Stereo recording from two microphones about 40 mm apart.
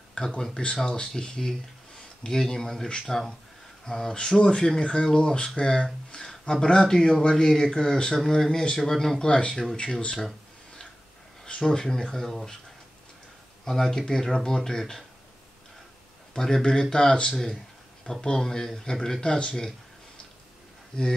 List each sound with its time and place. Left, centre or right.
0.1 s a sound: left
0.9 s speech: centre
9.2 s speech: centre
11.4 s speech: centre
13.7 s speech: centre
16.3 s speech: centre